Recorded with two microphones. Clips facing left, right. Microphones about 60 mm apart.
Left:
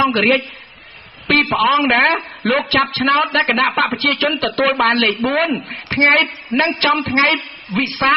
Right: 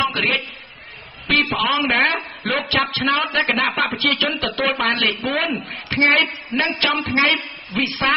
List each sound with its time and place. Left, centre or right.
0.0 s a man's voice: left
1.6 s a man's voice: left